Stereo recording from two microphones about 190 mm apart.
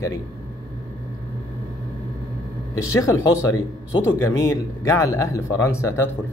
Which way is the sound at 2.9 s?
15° left (ahead or behind).